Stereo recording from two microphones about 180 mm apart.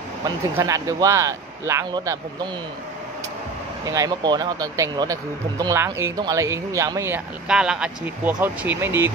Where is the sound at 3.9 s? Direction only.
20° right (ahead or behind).